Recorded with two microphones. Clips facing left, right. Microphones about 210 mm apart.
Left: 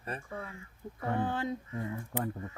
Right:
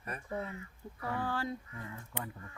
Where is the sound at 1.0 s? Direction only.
20° left (ahead or behind).